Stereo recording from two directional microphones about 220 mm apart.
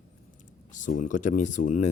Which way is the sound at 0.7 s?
35° left (ahead or behind).